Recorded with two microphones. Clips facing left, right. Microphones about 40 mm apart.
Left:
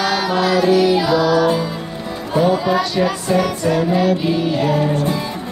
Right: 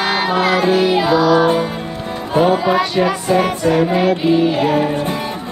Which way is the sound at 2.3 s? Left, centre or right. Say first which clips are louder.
Right 2 dB; right.